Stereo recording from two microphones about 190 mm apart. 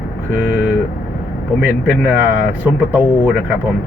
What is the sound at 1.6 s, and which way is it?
A man's voice, 10° right (ahead or behind).